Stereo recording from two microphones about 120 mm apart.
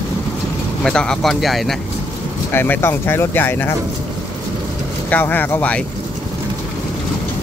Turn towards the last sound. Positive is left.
turn(degrees=15)  # may be behind; listen again after turning